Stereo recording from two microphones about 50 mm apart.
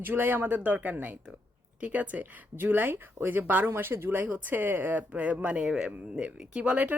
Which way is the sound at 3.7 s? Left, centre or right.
Right.